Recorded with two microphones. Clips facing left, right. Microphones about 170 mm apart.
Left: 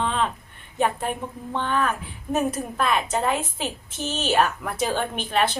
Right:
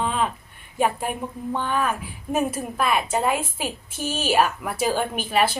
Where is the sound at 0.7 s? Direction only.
10° right (ahead or behind).